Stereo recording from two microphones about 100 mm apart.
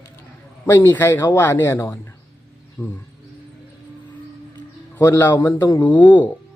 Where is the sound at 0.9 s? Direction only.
20° left (ahead or behind).